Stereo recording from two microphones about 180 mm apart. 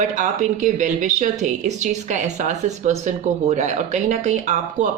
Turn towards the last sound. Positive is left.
turn(degrees=-40)  # may be behind; listen again after turning